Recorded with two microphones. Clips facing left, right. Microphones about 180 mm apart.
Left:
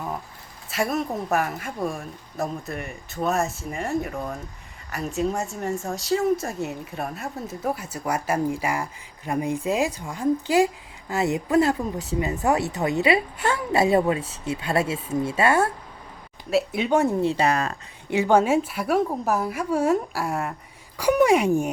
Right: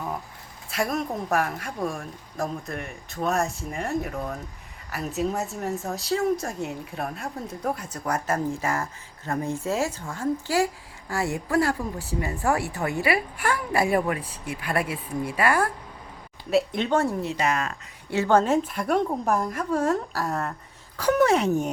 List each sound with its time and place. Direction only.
0.7 s a woman's voice: centre (ahead or behind); by 15.7 s 25° left (ahead or behind)
16.5 s a woman's voice: 5° left (ahead or behind)
17.2 s speech: 30° left (ahead or behind)
18.1 s a woman's voice: 15° left (ahead or behind)